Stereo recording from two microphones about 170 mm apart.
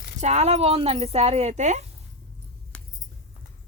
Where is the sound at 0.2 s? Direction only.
40° right (ahead or behind).